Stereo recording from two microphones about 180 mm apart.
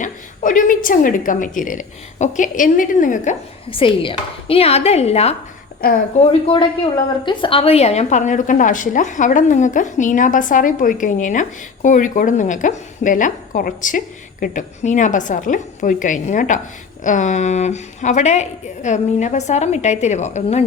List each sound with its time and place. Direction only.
0.0 s a woman's voice: 45° left (ahead or behind)
3.7 s a woman's voice: 30° left (ahead or behind)
5.8 s speech: 55° left (ahead or behind)
7.3 s a woman's voice: 30° left (ahead or behind)